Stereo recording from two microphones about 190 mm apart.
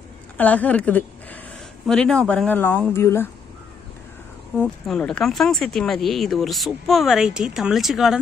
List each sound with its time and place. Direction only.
0.4 s speech: 10° left (ahead or behind)
4.6 s speech: 5° left (ahead or behind)